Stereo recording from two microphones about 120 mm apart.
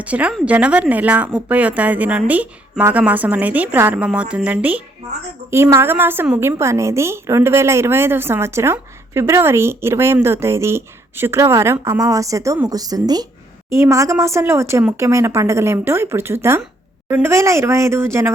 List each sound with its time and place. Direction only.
0.0 s a woman's voice: 10° right (ahead or behind); by 13.2 s 35° right (ahead or behind)
13.7 s a woman's voice: 20° right (ahead or behind)